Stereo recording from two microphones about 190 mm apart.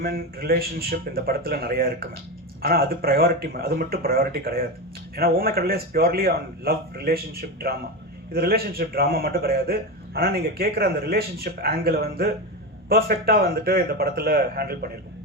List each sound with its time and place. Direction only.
0.0 s speech: 50° right (ahead or behind)
8.3 s speech: 50° right (ahead or behind)